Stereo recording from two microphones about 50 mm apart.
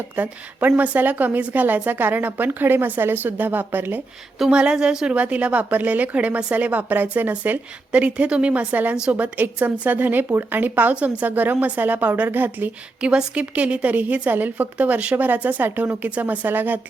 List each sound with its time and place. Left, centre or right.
0.2 s a woman's voice: right
4.5 s a woman's voice: centre
5.1 s a woman's voice: right
8.0 s a woman's voice: right
10.9 s a woman's voice: right
13.0 s a woman's voice: centre; by 16.8 s right